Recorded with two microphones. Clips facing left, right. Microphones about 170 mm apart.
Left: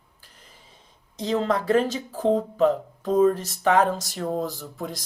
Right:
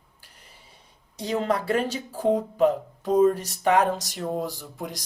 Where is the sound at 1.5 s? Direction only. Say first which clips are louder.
Left 4 dB; 40° left (ahead or behind).